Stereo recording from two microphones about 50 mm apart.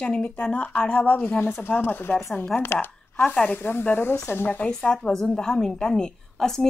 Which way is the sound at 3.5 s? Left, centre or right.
Left.